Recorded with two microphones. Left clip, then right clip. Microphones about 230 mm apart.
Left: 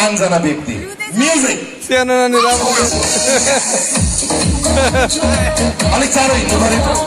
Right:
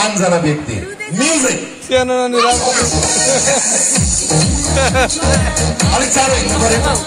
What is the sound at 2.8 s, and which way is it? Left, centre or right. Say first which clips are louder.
Speech: even; left.